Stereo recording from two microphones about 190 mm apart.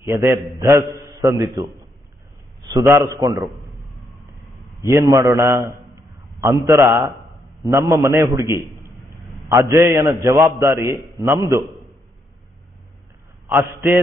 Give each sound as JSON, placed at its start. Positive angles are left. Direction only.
{"t": 0.0, "sound": "a man's voice", "side_deg": -15}
{"t": 4.8, "sound": "a man's voice", "side_deg": -15}
{"t": 8.7, "sound": "a sound", "side_deg": -20}
{"t": 9.5, "sound": "a man's voice", "side_deg": -20}
{"t": 13.5, "sound": "a man's voice", "side_deg": -15}